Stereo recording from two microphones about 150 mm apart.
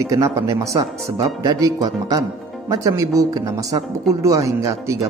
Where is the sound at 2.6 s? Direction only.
20° right (ahead or behind).